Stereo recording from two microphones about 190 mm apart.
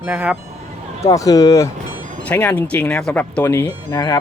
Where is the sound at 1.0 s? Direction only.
15° left (ahead or behind).